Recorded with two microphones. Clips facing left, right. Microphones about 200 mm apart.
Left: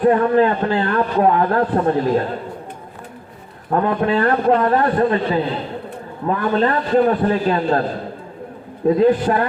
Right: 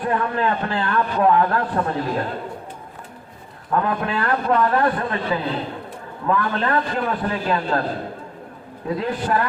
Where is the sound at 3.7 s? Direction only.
35° left (ahead or behind).